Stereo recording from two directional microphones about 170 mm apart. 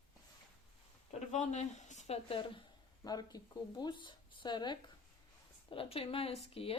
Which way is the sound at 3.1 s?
20° left (ahead or behind).